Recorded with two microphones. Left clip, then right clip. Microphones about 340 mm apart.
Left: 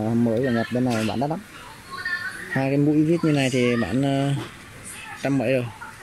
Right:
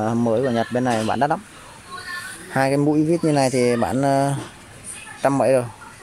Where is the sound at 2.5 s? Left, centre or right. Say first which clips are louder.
Right 4 dB; right.